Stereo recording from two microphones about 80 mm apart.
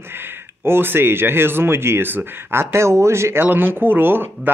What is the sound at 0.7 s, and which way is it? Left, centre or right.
Speech, right.